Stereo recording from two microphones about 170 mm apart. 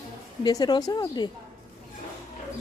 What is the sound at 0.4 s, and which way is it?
Speech, 25° left (ahead or behind).